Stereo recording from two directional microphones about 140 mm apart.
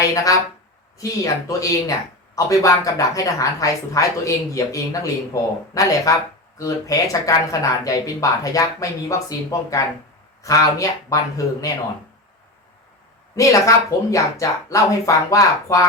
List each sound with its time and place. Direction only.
1.0 s a woman's voice: 25° left (ahead or behind)
13.3 s a woman's voice: 25° left (ahead or behind)